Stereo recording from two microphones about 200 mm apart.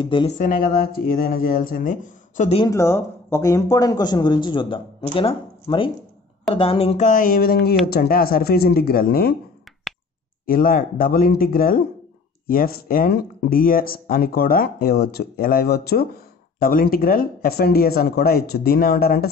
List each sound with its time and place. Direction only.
0.0 s speech: 25° left (ahead or behind)
0.4 s speech: 45° left (ahead or behind)
2.6 s speech: 15° left (ahead or behind); by 9.3 s 50° left (ahead or behind)
10.4 s speech: 45° left (ahead or behind)